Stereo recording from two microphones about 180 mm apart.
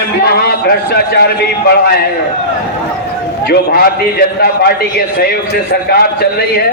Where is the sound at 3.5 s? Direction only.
60° left (ahead or behind).